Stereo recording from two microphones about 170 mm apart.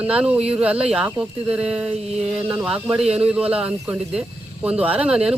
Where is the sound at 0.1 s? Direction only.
5° right (ahead or behind).